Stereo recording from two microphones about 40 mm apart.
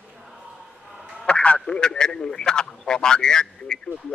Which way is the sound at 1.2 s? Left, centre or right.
Left.